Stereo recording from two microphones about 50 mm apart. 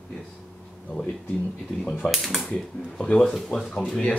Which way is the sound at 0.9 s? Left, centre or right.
Left.